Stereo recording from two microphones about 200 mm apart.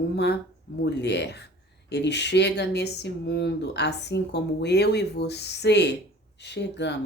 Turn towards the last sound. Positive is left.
turn(degrees=60)  # may be behind; listen again after turning